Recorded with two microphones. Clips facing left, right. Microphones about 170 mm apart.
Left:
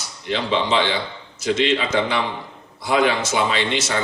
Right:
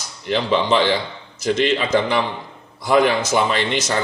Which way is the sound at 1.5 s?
45° right (ahead or behind).